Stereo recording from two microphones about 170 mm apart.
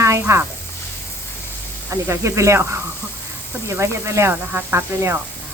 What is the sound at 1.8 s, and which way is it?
Speech, 15° right (ahead or behind).